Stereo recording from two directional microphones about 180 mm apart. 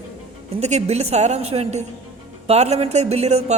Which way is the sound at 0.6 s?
35° right (ahead or behind).